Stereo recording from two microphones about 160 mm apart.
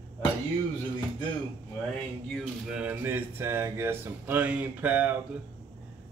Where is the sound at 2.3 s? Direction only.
5° right (ahead or behind).